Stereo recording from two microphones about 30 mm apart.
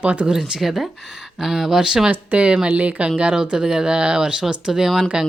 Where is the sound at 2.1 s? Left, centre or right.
Right.